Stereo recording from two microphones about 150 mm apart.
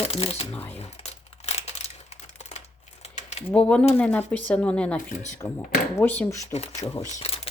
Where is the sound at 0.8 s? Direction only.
45° left (ahead or behind).